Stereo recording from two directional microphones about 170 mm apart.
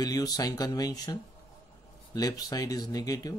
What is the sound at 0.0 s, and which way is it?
Speech, 20° left (ahead or behind).